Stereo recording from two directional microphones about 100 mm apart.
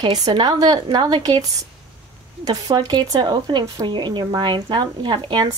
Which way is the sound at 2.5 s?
40° right (ahead or behind).